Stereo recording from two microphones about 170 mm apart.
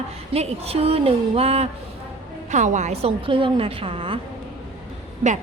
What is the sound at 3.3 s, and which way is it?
Speech, 30° right (ahead or behind).